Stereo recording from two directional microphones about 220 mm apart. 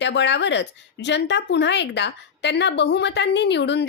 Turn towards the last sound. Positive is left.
turn(degrees=50)  # may be behind; listen again after turning